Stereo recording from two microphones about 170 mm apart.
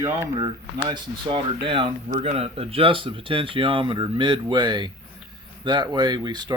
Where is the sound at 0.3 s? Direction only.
25° right (ahead or behind).